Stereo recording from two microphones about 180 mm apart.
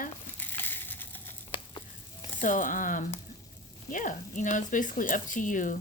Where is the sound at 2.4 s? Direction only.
45° left (ahead or behind).